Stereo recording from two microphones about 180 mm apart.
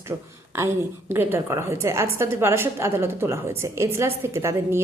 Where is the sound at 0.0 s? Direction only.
15° right (ahead or behind).